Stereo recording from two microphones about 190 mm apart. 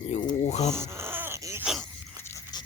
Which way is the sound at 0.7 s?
15° right (ahead or behind).